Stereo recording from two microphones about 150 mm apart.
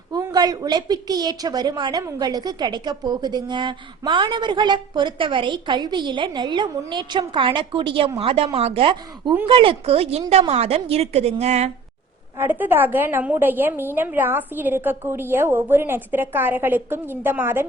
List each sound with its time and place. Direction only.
0.1 s a woman's voice: 25° right (ahead or behind); by 11.7 s 45° right (ahead or behind)
12.4 s a woman's voice: 10° right (ahead or behind)